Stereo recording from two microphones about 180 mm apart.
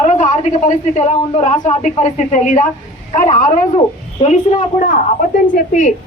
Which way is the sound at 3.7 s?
35° left (ahead or behind).